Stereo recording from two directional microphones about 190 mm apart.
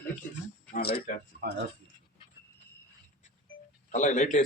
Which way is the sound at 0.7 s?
55° left (ahead or behind).